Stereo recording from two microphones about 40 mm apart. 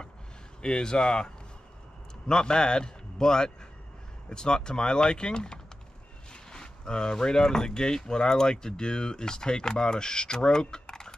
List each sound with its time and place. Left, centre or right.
0.6 s speech: centre